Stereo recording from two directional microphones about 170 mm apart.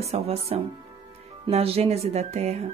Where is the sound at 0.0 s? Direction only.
35° right (ahead or behind).